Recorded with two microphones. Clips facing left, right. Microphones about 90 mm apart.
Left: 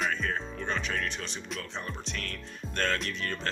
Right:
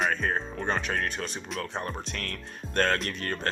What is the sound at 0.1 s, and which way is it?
Music, 40° right (ahead or behind).